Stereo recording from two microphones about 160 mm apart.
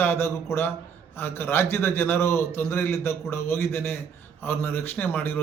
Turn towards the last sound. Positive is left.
turn(degrees=15)  # may be behind; listen again after turning